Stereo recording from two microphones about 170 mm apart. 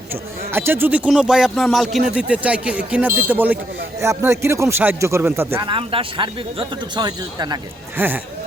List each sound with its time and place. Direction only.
0.1 s speech: 15° right (ahead or behind)
5.6 s speech: 30° right (ahead or behind)
7.9 s speech: 10° right (ahead or behind)